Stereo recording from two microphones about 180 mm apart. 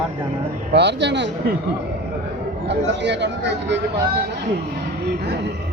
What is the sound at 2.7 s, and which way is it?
A man's voice, 75° right (ahead or behind).